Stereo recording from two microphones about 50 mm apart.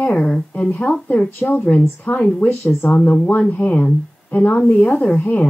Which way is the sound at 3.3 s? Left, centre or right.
Left.